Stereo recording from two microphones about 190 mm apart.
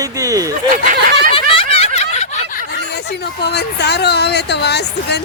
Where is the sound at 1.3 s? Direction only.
30° left (ahead or behind).